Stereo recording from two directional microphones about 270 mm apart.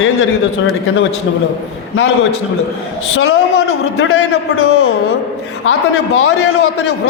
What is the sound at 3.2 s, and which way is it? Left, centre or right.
A man's voice, left.